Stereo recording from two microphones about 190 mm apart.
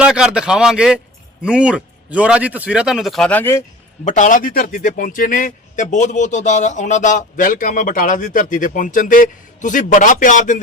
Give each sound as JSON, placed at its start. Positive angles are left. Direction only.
{"t": 0.0, "sound": "a man's voice", "side_deg": -5}
{"t": 4.0, "sound": "a man's voice", "side_deg": 40}